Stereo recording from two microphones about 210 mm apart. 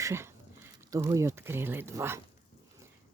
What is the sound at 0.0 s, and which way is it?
Speech, 10° right (ahead or behind).